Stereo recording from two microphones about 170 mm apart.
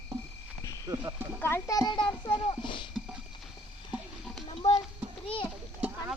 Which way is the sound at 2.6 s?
30° left (ahead or behind).